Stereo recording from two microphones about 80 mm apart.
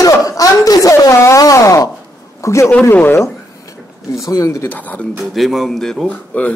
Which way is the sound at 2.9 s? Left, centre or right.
Left.